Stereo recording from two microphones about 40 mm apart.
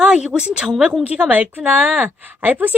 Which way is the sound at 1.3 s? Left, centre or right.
Right.